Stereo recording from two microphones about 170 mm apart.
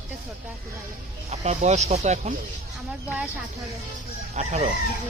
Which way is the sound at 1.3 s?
45° right (ahead or behind).